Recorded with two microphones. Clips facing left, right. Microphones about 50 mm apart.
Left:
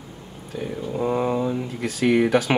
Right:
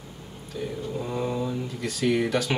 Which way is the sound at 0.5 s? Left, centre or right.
Left.